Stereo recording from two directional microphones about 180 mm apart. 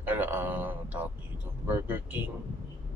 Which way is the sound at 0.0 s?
10° right (ahead or behind).